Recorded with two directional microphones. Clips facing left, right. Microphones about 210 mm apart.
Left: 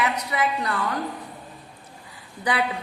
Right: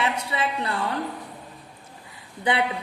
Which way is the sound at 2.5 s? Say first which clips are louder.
Right 1 dB; 25° right (ahead or behind).